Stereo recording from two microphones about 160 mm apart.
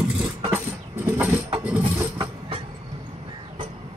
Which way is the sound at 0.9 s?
10° right (ahead or behind).